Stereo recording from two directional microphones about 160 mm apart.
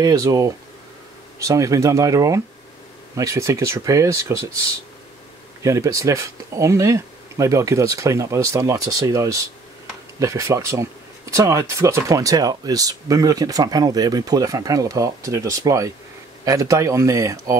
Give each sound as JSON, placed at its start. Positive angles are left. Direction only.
{"t": 0.0, "sound": "speech", "side_deg": -20}
{"t": 5.6, "sound": "speech", "side_deg": -20}